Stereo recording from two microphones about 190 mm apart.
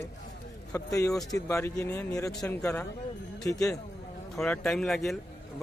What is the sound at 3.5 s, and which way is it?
Speech, 15° left (ahead or behind).